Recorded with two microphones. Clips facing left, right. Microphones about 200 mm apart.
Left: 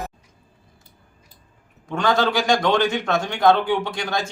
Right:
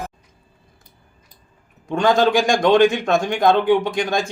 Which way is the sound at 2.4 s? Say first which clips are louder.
Right 3 dB; 50° right (ahead or behind).